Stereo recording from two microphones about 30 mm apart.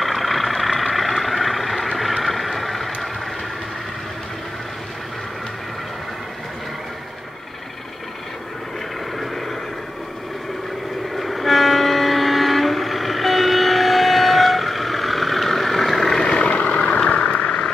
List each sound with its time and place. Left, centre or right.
0.0 s vehicle: centre
11.1 s train: centre
16.2 s vehicle: left
16.5 s vehicle: left